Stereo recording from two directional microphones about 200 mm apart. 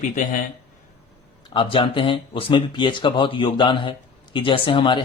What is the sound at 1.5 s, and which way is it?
Speech, 25° left (ahead or behind).